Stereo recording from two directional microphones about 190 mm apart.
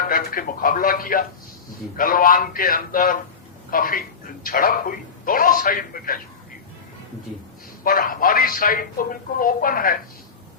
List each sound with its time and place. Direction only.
0.1 s speech: 45° left (ahead or behind)
7.9 s speech: 45° left (ahead or behind)